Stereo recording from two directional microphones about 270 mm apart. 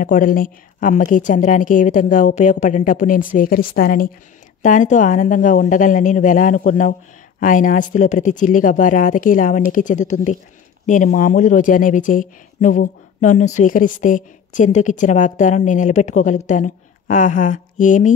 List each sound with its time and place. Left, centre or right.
0.0 s speech: left